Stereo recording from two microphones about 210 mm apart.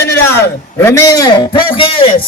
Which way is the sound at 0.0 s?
10° left (ahead or behind).